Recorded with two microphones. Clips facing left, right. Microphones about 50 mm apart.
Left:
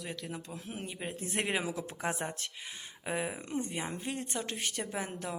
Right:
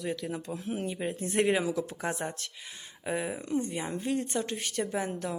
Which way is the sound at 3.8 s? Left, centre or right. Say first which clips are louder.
Right 6 dB; centre.